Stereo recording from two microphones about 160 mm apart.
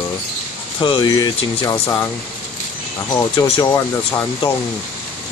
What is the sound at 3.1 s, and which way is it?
Speech, 25° left (ahead or behind).